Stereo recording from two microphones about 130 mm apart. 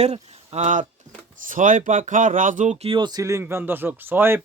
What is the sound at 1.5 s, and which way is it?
Speech, 90° right.